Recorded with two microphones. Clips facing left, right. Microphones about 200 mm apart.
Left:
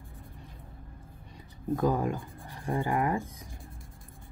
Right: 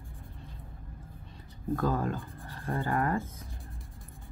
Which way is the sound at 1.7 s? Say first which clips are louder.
Left 2 dB; 15° left (ahead or behind).